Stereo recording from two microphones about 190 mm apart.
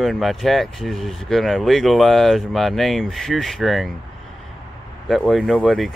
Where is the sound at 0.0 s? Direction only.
Centre (ahead or behind).